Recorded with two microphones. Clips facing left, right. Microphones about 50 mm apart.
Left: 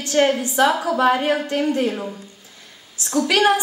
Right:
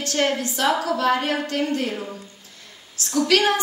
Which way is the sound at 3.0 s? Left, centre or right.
Left.